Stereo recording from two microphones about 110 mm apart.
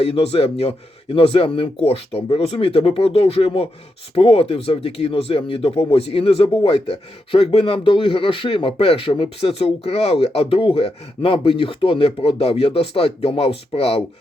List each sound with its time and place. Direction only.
0.0 s speech: 60° left (ahead or behind)